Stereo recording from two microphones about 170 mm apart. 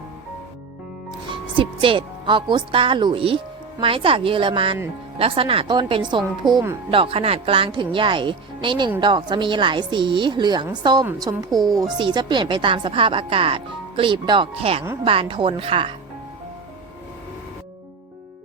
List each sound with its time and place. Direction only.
1.3 s a woman's voice: 30° right (ahead or behind)
6.9 s a woman's voice: 30° right (ahead or behind)